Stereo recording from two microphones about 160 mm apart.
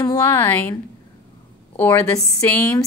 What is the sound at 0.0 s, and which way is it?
Speech, 20° left (ahead or behind).